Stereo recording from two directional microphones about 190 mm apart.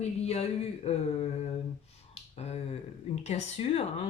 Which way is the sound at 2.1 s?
35° left (ahead or behind).